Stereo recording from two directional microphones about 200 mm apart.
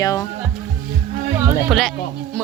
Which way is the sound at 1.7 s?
Centre (ahead or behind).